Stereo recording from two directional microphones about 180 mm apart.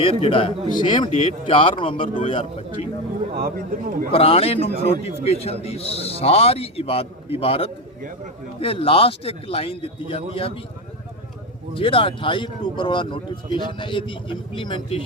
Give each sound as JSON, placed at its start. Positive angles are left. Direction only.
{"t": 0.0, "sound": "a man's voice", "side_deg": 30}
{"t": 3.3, "sound": "a man's voice", "side_deg": -55}
{"t": 4.1, "sound": "a man's voice", "side_deg": 35}
{"t": 11.7, "sound": "speech", "side_deg": 30}